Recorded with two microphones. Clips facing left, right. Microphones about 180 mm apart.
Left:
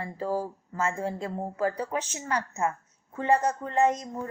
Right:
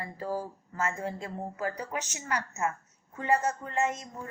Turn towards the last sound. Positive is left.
turn(degrees=35)  # may be behind; listen again after turning